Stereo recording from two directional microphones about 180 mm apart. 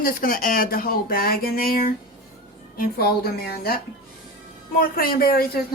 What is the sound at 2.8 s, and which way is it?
Speech, 60° left (ahead or behind).